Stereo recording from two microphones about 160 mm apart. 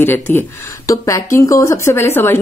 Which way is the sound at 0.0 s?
15° left (ahead or behind).